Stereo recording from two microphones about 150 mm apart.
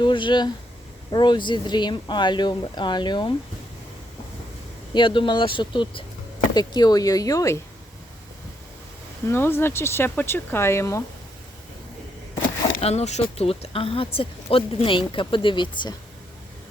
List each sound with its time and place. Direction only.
0.0 s speech: 30° left (ahead or behind)
4.9 s speech: 35° left (ahead or behind)
9.2 s speech: 15° left (ahead or behind)
12.8 s speech: 45° left (ahead or behind)